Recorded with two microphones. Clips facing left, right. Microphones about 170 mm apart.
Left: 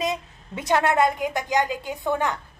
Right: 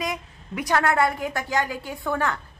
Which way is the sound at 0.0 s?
25° left (ahead or behind).